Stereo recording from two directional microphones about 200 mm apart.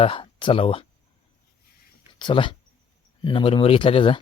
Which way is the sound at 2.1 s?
25° left (ahead or behind).